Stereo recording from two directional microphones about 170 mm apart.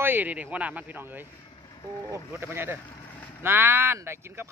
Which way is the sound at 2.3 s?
15° right (ahead or behind).